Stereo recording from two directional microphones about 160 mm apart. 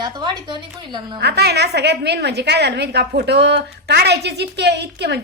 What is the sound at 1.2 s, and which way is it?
A woman's voice, 90° right.